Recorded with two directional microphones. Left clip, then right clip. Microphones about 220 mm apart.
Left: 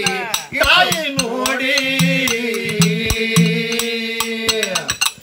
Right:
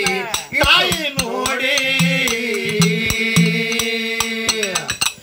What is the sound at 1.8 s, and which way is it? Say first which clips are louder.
Music: even; 50° right (ahead or behind).